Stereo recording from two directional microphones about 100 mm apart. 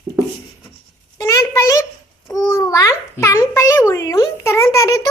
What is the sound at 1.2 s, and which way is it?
A child's voice, 35° left (ahead or behind).